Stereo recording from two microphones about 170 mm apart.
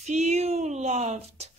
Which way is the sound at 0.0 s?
40° right (ahead or behind).